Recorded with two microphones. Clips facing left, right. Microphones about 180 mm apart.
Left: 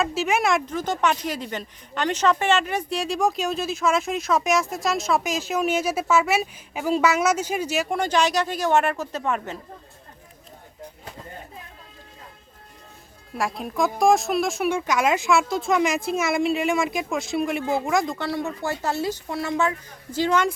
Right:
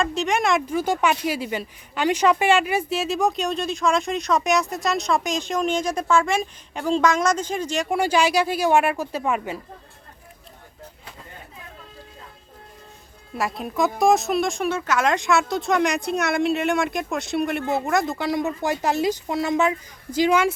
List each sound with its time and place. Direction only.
0.0 s speech: 5° left (ahead or behind)
0.7 s speech: 10° right (ahead or behind); by 7.9 s 10° left (ahead or behind)
7.9 s speech: 10° right (ahead or behind)
13.3 s speech: centre (ahead or behind)
14.7 s speech: 15° left (ahead or behind); by 20.5 s 10° right (ahead or behind)